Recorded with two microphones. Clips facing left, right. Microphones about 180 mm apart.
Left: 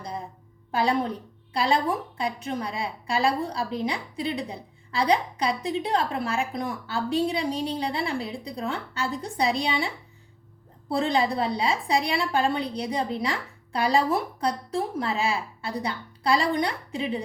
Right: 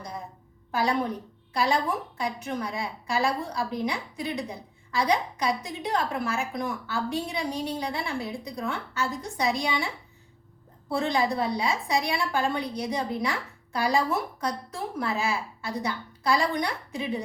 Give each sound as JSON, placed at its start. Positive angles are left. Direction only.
{"t": 0.7, "sound": "a woman's voice", "side_deg": 30}
{"t": 10.9, "sound": "a woman's voice", "side_deg": 30}